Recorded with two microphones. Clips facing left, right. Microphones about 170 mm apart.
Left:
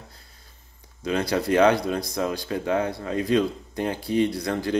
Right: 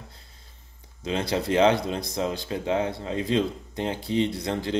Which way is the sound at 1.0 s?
20° right (ahead or behind).